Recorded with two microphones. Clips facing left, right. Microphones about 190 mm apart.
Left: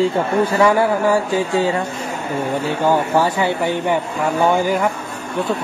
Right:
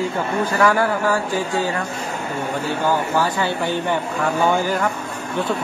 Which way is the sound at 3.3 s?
15° left (ahead or behind).